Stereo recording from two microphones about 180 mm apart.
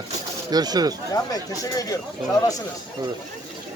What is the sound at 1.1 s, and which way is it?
Speech, 20° left (ahead or behind).